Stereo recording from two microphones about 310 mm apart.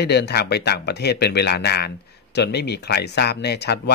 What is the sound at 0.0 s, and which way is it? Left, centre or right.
Speech, left.